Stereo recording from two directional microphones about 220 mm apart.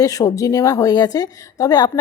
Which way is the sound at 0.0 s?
15° left (ahead or behind).